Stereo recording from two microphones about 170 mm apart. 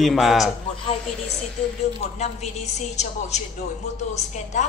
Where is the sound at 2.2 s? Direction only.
40° left (ahead or behind).